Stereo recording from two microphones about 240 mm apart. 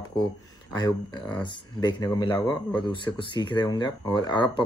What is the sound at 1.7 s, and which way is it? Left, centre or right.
Speech, centre.